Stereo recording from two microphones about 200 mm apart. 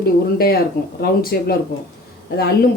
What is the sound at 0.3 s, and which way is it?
Speech, 50° left (ahead or behind).